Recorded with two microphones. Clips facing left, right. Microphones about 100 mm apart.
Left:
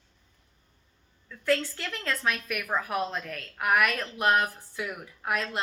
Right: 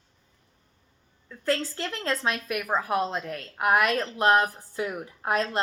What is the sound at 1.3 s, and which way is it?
A woman's voice, 30° right (ahead or behind).